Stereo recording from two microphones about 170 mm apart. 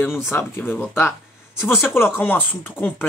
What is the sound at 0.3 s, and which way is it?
Speech, 15° left (ahead or behind).